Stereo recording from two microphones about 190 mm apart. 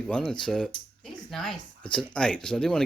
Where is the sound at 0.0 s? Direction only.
5° left (ahead or behind).